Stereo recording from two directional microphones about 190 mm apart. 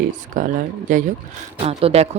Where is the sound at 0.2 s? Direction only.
45° right (ahead or behind).